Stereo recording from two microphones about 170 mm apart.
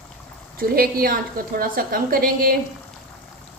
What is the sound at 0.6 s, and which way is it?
A woman's voice, 60° right (ahead or behind).